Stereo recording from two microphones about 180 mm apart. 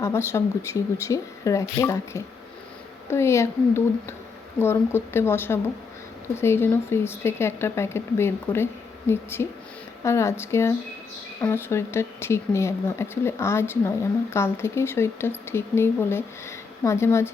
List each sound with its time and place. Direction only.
0.0 s speech: 15° left (ahead or behind)